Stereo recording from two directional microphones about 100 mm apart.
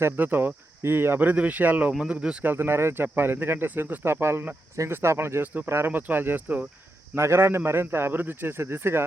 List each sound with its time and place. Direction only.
0.0 s speech: 20° right (ahead or behind)
2.4 s speech: 20° right (ahead or behind)